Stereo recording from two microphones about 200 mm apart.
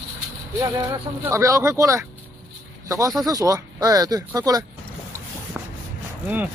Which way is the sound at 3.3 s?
15° right (ahead or behind).